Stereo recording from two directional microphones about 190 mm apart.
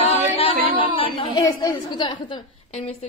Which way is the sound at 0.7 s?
25° left (ahead or behind).